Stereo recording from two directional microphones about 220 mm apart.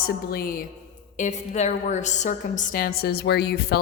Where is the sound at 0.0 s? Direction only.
45° left (ahead or behind).